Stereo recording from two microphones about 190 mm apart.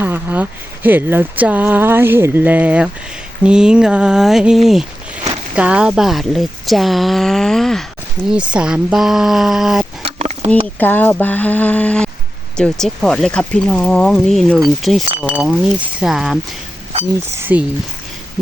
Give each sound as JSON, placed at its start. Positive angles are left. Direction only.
{"t": 0.0, "sound": "a woman's voice", "side_deg": -10}
{"t": 10.0, "sound": "a sound", "side_deg": -35}
{"t": 10.8, "sound": "a woman's voice", "side_deg": 10}
{"t": 17.5, "sound": "speech", "side_deg": -5}